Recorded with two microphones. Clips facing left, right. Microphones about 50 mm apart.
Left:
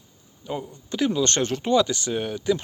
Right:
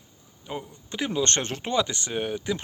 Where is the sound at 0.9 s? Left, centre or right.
Right.